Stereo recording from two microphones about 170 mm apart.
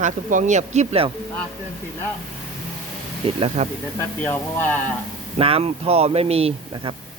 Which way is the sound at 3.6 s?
40° right (ahead or behind).